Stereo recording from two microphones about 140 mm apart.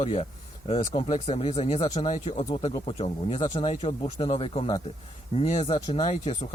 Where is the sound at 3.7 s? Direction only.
50° left (ahead or behind).